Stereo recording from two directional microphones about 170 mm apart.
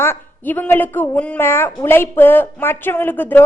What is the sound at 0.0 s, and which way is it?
Speech, 10° left (ahead or behind).